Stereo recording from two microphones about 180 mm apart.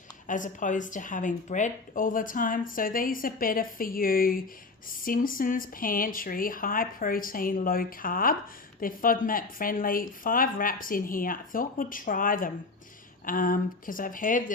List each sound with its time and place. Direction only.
0.3 s speech: 45° left (ahead or behind)